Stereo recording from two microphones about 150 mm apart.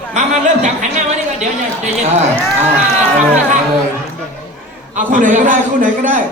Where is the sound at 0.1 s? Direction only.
50° right (ahead or behind).